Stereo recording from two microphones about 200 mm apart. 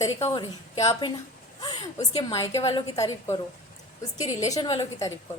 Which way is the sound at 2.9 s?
15° left (ahead or behind).